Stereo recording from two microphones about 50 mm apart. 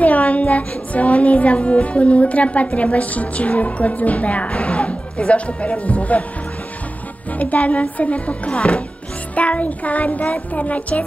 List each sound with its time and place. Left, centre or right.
0.0 s a woman's voice: left
7.3 s a woman's voice: left